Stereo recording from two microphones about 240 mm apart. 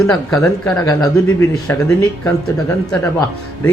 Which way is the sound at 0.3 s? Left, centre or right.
Centre.